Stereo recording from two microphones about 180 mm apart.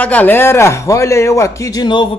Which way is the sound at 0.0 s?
10° left (ahead or behind).